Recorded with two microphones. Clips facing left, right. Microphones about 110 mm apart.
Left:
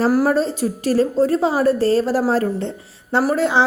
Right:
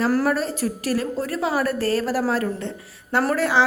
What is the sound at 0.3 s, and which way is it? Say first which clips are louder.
A woman's voice: left 4 dB; 25° left (ahead or behind).